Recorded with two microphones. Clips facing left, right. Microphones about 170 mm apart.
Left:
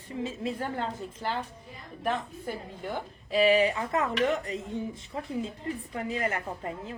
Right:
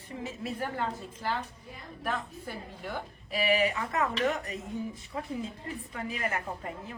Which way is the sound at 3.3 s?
30° left (ahead or behind).